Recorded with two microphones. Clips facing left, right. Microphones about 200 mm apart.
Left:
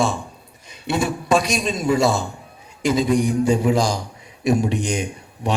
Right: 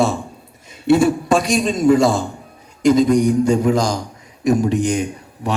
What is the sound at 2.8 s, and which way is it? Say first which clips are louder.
Mantra: right 5 dB; 5° left (ahead or behind).